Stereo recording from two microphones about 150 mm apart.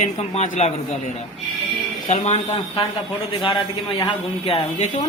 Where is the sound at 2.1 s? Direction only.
45° left (ahead or behind).